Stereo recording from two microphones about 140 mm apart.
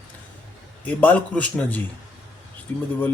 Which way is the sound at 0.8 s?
10° left (ahead or behind).